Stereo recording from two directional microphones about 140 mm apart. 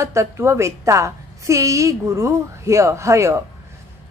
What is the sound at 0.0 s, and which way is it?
A woman's voice, 20° right (ahead or behind).